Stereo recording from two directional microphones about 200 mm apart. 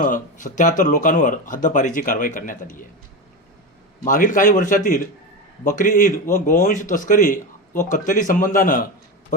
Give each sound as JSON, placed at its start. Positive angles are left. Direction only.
{"t": 0.0, "sound": "a man's voice", "side_deg": 40}
{"t": 4.0, "sound": "a man's voice", "side_deg": 40}